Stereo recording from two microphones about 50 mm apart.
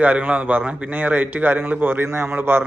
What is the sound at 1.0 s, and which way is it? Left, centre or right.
A man's voice, right.